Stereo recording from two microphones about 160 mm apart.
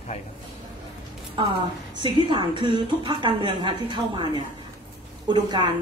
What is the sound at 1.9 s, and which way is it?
Speech, 30° right (ahead or behind).